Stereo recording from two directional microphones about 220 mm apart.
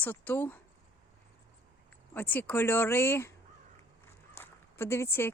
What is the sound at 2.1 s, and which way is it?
Speech, 10° left (ahead or behind).